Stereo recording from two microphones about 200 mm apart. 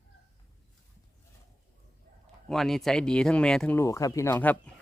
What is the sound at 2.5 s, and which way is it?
Speech, centre (ahead or behind).